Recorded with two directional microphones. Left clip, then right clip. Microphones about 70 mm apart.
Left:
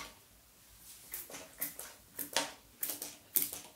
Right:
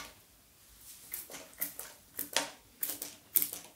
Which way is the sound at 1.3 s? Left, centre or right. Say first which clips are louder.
Right 1 dB; right.